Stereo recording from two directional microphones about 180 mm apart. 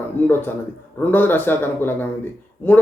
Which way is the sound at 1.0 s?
10° left (ahead or behind).